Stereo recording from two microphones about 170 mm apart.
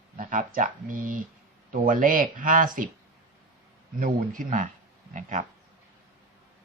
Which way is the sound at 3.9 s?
55° right (ahead or behind).